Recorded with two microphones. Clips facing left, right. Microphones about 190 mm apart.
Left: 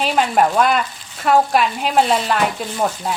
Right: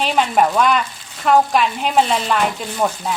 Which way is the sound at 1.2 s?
5° left (ahead or behind).